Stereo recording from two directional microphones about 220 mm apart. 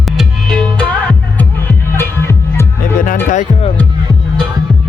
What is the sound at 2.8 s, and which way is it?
Music, 35° left (ahead or behind).